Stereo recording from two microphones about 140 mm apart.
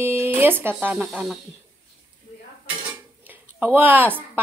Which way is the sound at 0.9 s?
Centre (ahead or behind).